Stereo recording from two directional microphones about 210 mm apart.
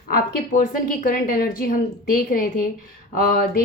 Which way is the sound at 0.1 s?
40° left (ahead or behind).